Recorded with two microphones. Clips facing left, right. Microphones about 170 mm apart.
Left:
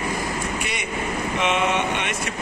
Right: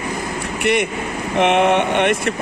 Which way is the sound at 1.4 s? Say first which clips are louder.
Right 8 dB; 60° right (ahead or behind).